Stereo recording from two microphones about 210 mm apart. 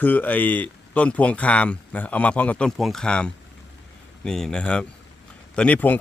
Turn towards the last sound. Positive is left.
turn(degrees=10)  # may be behind; listen again after turning